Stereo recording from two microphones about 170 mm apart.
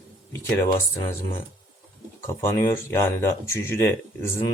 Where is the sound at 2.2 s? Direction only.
15° left (ahead or behind).